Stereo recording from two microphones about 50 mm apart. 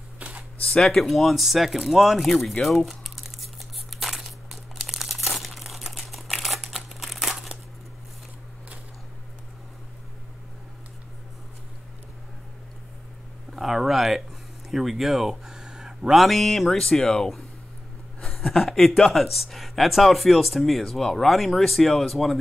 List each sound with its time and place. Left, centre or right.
0.2 s camera: right
1.0 s speech: centre
3.9 s crumpling: centre
13.5 s a sound: centre
16.2 s speech: centre